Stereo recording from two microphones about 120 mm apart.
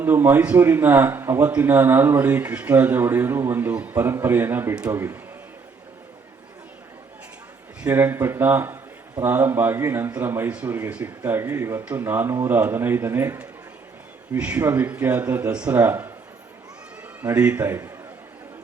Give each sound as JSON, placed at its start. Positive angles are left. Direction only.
{"t": 0.0, "sound": "a man's voice", "side_deg": -20}
{"t": 7.8, "sound": "a man's voice", "side_deg": -15}
{"t": 17.2, "sound": "a man's voice", "side_deg": -20}